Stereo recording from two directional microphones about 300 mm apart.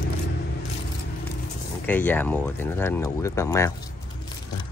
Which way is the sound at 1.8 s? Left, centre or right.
Centre.